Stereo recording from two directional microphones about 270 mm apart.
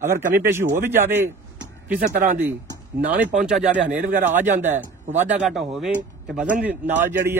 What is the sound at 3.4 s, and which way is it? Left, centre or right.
Speech, centre.